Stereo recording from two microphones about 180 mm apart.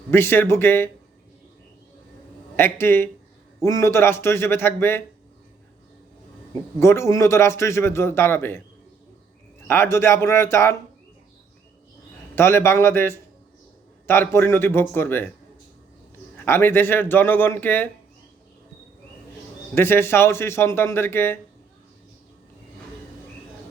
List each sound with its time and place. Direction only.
0.1 s a man's voice: 10° left (ahead or behind)
2.6 s a man's voice: 15° left (ahead or behind)
6.5 s a man's voice: 15° left (ahead or behind)
9.6 s a man's voice: 15° left (ahead or behind)
12.4 s a man's voice: 15° left (ahead or behind)
16.4 s a man's voice: 10° left (ahead or behind)
19.7 s a man's voice: 15° left (ahead or behind)